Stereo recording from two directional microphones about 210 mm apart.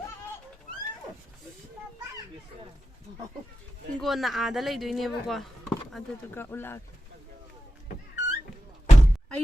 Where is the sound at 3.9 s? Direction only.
Centre (ahead or behind).